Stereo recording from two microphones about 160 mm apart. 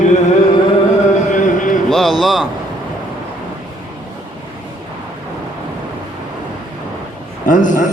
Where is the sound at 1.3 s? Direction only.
50° left (ahead or behind).